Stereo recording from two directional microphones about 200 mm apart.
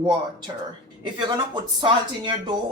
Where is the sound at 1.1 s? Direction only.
20° right (ahead or behind).